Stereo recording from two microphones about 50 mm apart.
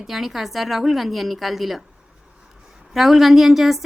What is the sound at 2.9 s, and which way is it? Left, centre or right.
Speech, centre.